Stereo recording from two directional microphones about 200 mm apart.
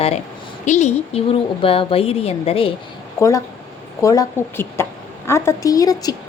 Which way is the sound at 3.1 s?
15° left (ahead or behind).